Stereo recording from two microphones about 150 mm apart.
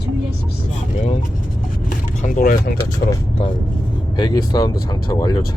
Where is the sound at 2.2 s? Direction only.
65° left (ahead or behind); by 2.8 s 80° left.